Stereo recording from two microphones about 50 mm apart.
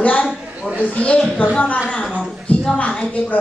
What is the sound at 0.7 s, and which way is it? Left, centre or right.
Speech, left.